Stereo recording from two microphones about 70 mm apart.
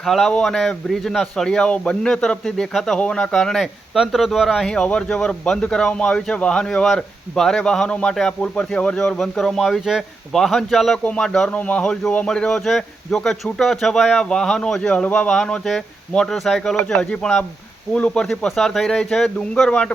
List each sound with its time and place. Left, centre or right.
0.0 s a man's voice: centre
4.6 s a man's voice: centre
11.0 s a man's voice: centre
18.3 s speech: centre